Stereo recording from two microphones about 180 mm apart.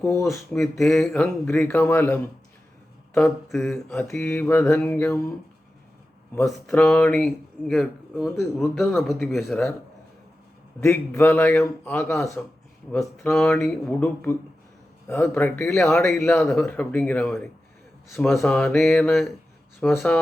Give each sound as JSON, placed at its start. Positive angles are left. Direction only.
{"t": 0.0, "sound": "speech", "side_deg": 15}
{"t": 0.3, "sound": "speech", "side_deg": 0}
{"t": 4.0, "sound": "speech", "side_deg": 15}
{"t": 6.7, "sound": "speech", "side_deg": 10}
{"t": 10.8, "sound": "speech", "side_deg": 10}